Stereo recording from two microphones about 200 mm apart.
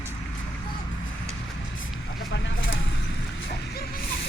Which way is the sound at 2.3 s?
70° left (ahead or behind).